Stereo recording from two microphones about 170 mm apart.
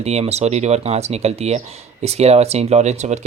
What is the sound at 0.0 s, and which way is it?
Speech, 40° right (ahead or behind).